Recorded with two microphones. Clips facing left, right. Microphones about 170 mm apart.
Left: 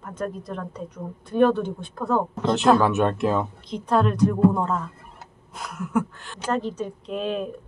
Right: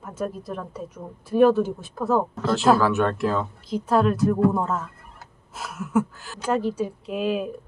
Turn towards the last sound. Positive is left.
turn(degrees=-5)  # may be behind; listen again after turning